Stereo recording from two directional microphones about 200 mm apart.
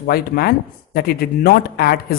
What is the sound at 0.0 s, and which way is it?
Speech, 50° left (ahead or behind).